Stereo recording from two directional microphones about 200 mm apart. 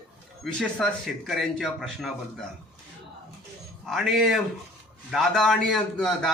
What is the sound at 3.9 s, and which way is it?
A man's voice, centre (ahead or behind).